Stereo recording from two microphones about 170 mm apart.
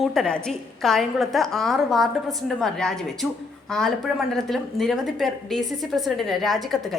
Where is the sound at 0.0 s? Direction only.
Centre (ahead or behind).